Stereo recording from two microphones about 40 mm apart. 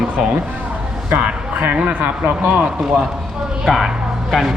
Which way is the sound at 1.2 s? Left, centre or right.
Right.